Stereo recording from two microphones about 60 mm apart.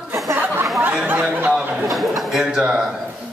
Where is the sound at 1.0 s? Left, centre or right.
Right.